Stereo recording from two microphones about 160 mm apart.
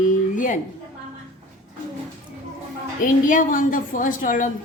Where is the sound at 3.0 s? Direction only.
55° left (ahead or behind).